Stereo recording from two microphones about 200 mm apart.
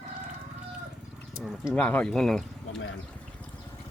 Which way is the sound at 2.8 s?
75° left (ahead or behind).